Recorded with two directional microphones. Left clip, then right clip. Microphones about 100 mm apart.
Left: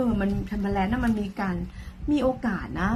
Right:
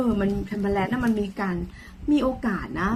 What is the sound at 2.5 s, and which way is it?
Speech, 30° left (ahead or behind).